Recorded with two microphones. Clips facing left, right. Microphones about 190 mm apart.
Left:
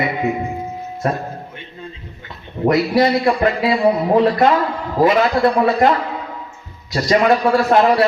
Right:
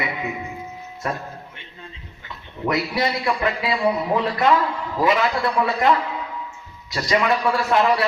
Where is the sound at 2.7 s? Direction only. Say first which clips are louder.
Left 8 dB; 40° left (ahead or behind).